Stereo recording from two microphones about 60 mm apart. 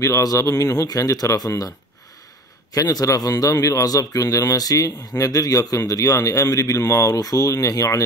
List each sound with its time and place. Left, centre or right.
0.0 s speech: left
2.9 s speech: left